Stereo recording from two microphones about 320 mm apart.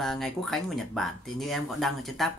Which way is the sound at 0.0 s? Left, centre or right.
Centre.